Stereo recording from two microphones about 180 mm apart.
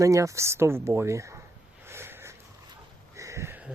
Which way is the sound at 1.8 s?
15° right (ahead or behind).